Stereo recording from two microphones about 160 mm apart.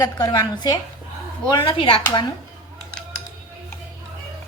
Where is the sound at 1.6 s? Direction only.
35° left (ahead or behind).